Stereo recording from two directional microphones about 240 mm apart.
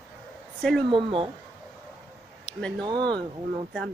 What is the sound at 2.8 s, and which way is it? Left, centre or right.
Speech, centre.